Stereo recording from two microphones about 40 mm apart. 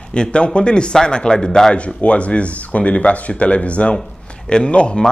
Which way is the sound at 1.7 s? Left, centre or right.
Left.